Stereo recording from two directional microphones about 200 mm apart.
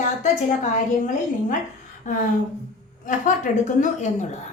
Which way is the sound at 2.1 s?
40° left (ahead or behind).